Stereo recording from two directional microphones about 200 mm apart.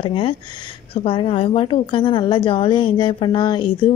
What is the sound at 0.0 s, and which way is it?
Speech, 25° left (ahead or behind).